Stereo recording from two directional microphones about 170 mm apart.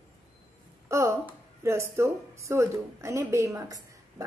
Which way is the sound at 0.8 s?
15° right (ahead or behind).